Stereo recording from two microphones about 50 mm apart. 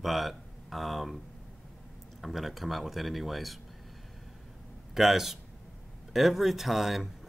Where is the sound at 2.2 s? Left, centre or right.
Centre.